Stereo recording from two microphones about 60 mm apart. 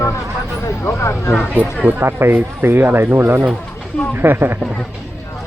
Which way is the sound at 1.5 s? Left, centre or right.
Right.